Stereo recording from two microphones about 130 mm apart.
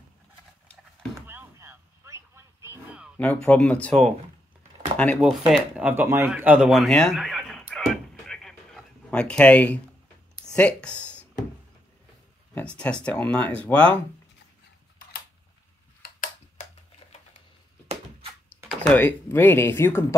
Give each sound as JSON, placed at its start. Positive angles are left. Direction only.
{"t": 1.1, "sound": "a sound", "side_deg": -15}
{"t": 3.2, "sound": "speech", "side_deg": 10}
{"t": 5.5, "sound": "speech", "side_deg": -10}
{"t": 6.7, "sound": "a sound", "side_deg": 0}
{"t": 10.4, "sound": "speech", "side_deg": 10}
{"t": 12.5, "sound": "speech", "side_deg": 10}
{"t": 17.0, "sound": "typewriter", "side_deg": 55}
{"t": 18.8, "sound": "speech", "side_deg": 10}